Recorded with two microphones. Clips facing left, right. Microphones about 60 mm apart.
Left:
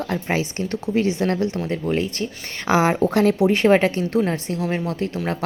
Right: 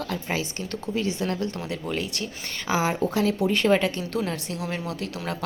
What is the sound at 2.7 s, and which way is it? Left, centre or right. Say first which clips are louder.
Speech: left 6 dB; left.